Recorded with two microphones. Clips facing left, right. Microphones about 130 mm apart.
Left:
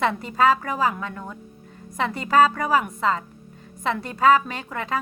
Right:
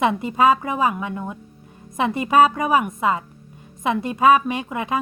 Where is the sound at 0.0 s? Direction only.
15° right (ahead or behind).